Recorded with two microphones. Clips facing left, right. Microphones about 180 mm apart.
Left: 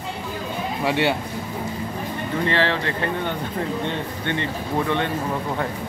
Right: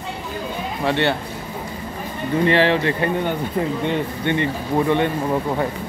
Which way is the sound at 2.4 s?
15° right (ahead or behind).